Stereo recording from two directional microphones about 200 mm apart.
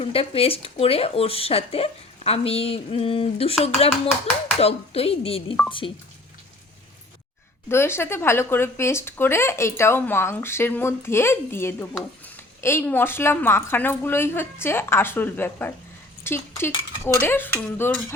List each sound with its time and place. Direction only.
0.0 s speech: 30° left (ahead or behind)
7.7 s speech: 10° left (ahead or behind)